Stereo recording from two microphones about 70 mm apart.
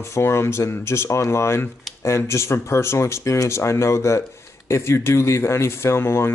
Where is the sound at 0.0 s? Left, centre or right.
Left.